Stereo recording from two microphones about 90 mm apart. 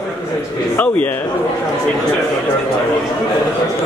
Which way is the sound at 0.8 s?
15° left (ahead or behind).